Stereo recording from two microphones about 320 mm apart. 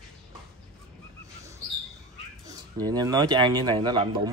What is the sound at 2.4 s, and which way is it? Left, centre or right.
A man's voice, centre.